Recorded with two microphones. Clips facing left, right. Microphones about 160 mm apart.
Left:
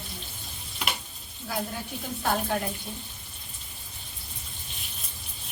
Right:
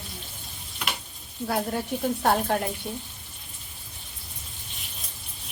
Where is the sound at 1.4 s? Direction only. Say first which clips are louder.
Right 6 dB; 55° right (ahead or behind).